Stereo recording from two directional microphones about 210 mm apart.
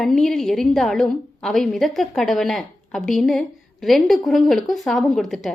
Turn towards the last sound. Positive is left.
turn(degrees=0)  # may be behind; listen again after turning